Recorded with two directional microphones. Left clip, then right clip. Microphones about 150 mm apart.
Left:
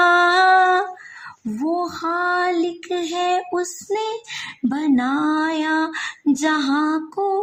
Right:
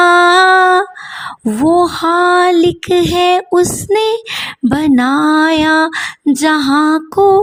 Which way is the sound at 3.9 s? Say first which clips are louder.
Right 11 dB; 50° right (ahead or behind).